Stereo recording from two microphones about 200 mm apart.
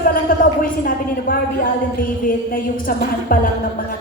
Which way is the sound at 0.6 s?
45° left (ahead or behind).